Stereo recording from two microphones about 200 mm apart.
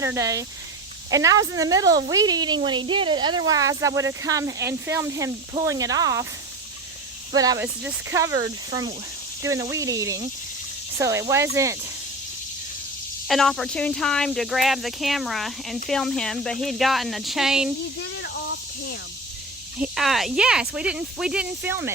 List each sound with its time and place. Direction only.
0.0 s speech: 15° right (ahead or behind)
7.3 s speech: 20° right (ahead or behind)
13.2 s speech: centre (ahead or behind)
18.2 s snake: 55° left (ahead or behind)
19.8 s speech: centre (ahead or behind)